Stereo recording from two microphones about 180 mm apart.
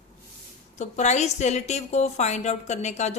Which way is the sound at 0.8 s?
40° left (ahead or behind).